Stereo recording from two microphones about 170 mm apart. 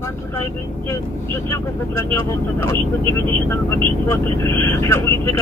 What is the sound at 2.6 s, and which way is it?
Speech, 15° left (ahead or behind).